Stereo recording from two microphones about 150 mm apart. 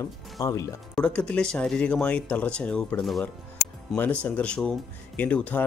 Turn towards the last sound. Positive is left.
turn(degrees=10)  # may be behind; listen again after turning